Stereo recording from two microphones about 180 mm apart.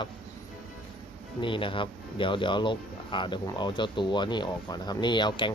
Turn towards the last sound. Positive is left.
turn(degrees=25)  # may be behind; listen again after turning